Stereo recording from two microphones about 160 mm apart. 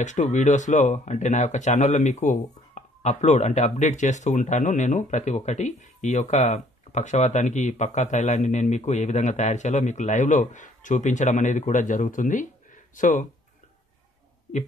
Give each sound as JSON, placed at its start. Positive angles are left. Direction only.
{"t": 0.0, "sound": "speech", "side_deg": 50}